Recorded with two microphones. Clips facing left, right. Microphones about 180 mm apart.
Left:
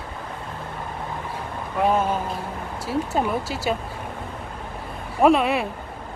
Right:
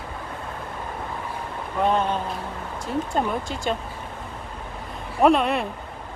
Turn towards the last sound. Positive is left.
turn(degrees=5)  # may be behind; listen again after turning